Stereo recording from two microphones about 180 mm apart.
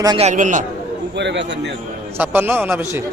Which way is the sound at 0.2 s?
40° right (ahead or behind).